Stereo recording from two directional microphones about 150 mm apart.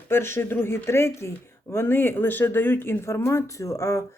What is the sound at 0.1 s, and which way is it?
Speech, 15° left (ahead or behind).